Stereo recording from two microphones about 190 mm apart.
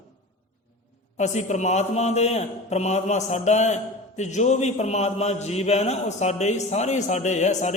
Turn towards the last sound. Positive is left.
turn(degrees=40)  # may be behind; listen again after turning